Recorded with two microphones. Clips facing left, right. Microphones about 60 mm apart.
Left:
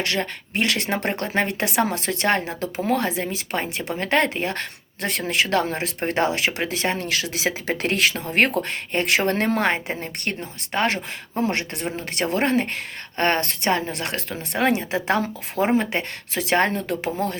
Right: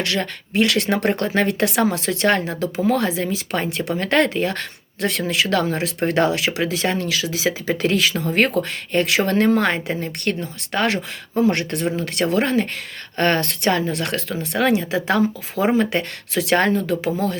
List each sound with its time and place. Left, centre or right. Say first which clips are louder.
0.0 s a woman's voice: right 2 dB; left
7.1 s a woman's voice: right 3 dB; left